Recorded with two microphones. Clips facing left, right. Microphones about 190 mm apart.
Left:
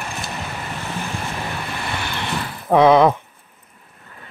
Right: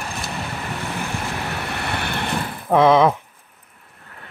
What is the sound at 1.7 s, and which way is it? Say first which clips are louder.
Vehicle: right 1 dB; 65° right (ahead or behind).